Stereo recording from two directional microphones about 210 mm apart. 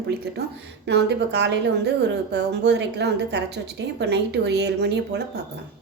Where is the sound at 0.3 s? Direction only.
55° right (ahead or behind).